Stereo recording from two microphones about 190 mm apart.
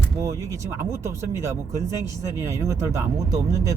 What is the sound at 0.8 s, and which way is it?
Speech, 15° right (ahead or behind).